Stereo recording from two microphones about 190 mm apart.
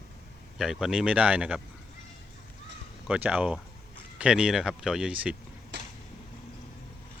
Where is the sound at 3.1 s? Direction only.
10° right (ahead or behind).